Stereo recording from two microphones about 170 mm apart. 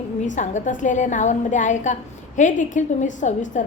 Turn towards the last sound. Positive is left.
turn(degrees=45)  # may be behind; listen again after turning